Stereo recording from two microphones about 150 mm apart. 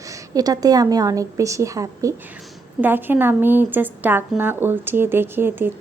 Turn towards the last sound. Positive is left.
turn(degrees=-15)  # may be behind; listen again after turning